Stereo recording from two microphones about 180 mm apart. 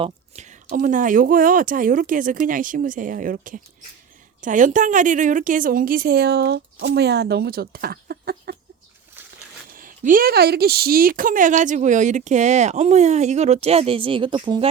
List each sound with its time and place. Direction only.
0.0 s a sound: 40° right (ahead or behind)
0.8 s a woman's voice: 45° right (ahead or behind)
9.7 s speech: 50° right (ahead or behind); by 14.7 s 25° right (ahead or behind)